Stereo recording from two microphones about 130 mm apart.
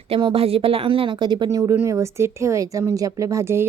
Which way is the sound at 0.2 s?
40° right (ahead or behind).